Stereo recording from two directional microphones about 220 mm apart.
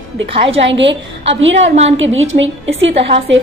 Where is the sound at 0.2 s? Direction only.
55° right (ahead or behind).